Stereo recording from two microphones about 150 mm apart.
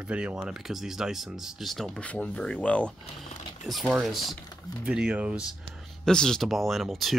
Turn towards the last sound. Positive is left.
turn(degrees=0)  # may be behind; listen again after turning